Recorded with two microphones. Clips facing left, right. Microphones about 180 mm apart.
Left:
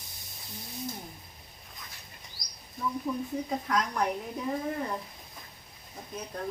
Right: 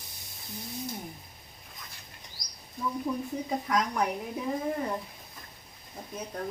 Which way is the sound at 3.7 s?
Centre (ahead or behind).